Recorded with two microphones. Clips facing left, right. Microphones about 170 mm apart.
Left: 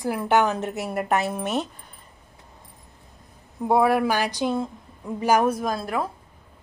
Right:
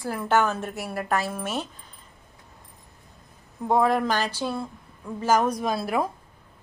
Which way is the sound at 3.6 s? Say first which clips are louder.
Left 2 dB; 10° left (ahead or behind).